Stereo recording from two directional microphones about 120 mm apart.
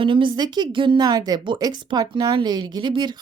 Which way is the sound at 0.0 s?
45° right (ahead or behind).